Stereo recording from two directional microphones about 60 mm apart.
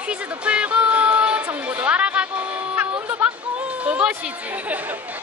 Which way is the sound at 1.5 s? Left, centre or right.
Right.